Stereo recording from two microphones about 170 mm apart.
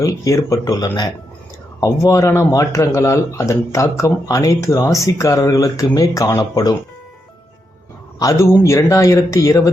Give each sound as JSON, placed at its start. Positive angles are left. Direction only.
{"t": 0.0, "sound": "speech", "side_deg": 20}
{"t": 8.2, "sound": "speech", "side_deg": 15}